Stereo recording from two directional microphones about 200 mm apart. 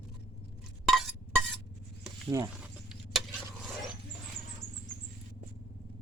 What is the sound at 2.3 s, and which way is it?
Speech, 15° right (ahead or behind).